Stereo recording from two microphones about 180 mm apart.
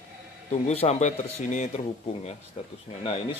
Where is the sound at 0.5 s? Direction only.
35° left (ahead or behind).